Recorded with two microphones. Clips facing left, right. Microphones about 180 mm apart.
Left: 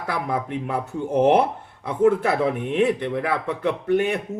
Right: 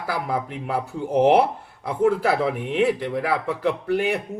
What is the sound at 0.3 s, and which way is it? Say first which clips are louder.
Speech: left 1 dB; 10° right (ahead or behind).